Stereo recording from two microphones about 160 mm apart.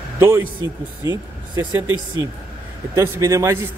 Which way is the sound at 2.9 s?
20° right (ahead or behind).